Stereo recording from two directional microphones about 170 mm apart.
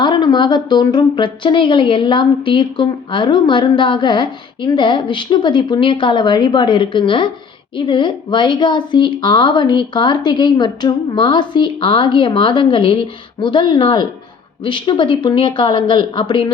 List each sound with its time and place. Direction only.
0.0 s a woman's voice: 25° left (ahead or behind)